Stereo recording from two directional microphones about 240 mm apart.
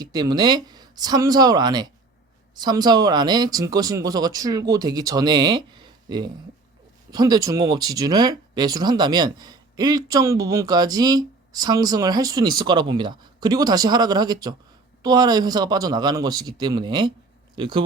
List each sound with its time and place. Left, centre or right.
0.0 s speech: centre